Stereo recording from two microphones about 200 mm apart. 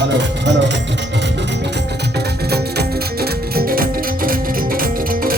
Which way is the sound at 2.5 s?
50° right (ahead or behind).